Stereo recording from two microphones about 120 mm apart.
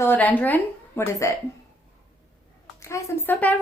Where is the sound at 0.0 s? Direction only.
15° left (ahead or behind).